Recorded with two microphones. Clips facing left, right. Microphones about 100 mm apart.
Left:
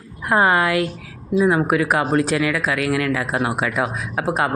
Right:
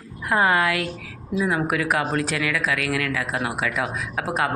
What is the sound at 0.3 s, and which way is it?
Speech, 30° left (ahead or behind).